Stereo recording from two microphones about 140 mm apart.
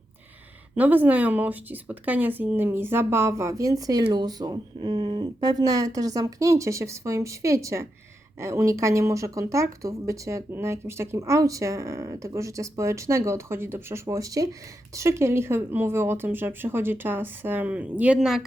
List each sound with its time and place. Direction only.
0.8 s speech: 10° right (ahead or behind)